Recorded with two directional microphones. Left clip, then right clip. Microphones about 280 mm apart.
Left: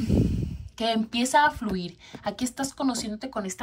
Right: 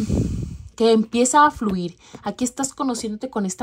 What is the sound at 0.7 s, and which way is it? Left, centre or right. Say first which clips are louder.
Speech: right 9 dB; centre.